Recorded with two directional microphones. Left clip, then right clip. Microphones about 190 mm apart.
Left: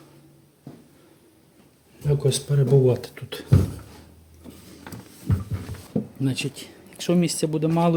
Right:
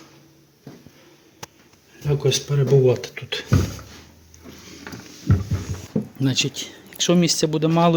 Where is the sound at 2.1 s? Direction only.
25° left (ahead or behind).